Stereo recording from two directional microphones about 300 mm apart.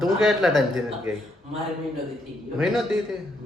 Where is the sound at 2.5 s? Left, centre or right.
Centre.